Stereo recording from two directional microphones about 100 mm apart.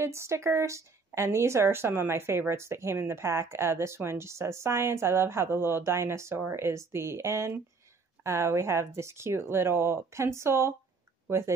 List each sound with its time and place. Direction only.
0.0 s a woman's voice: 25° right (ahead or behind)